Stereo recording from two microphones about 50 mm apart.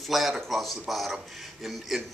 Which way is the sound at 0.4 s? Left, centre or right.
Centre.